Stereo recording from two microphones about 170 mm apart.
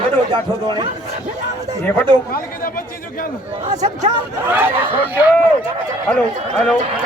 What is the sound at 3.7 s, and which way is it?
Speech, 45° right (ahead or behind).